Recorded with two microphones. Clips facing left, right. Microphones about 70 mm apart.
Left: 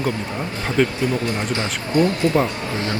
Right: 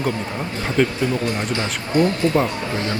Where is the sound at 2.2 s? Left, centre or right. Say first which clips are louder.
Even; right.